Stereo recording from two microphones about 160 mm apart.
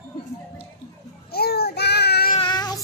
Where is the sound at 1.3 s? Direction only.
80° left.